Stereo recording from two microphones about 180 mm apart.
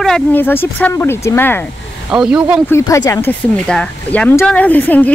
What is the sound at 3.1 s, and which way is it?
Speech, 10° left (ahead or behind).